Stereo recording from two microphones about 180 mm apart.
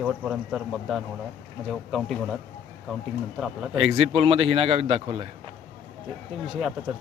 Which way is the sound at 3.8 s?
35° right (ahead or behind).